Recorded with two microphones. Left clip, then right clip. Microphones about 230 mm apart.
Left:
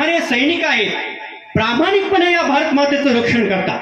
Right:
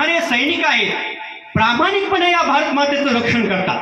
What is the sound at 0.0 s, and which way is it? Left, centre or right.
A woman's voice, centre.